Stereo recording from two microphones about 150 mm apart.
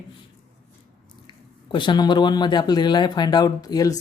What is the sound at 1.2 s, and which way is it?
Speech, 30° left (ahead or behind).